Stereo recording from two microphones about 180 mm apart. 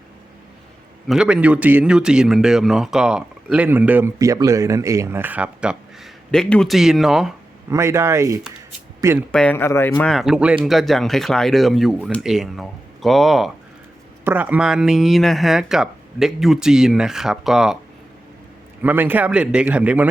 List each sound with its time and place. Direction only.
1.0 s a man's voice: 5° right (ahead or behind)
7.7 s a man's voice: 15° right (ahead or behind)
9.3 s a man's voice: 5° left (ahead or behind)
18.8 s a man's voice: 10° right (ahead or behind)